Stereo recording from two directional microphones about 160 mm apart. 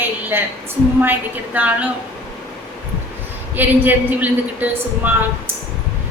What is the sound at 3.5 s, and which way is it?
A woman's voice, 10° right (ahead or behind).